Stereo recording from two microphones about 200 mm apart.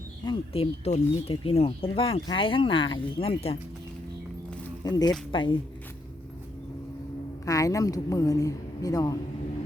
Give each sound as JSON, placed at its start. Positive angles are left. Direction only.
{"t": 0.3, "sound": "speech", "side_deg": 30}
{"t": 4.8, "sound": "speech", "side_deg": 20}
{"t": 7.4, "sound": "a woman's voice", "side_deg": 15}